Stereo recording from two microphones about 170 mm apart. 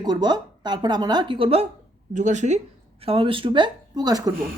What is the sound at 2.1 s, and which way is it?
Speech, 45° right (ahead or behind).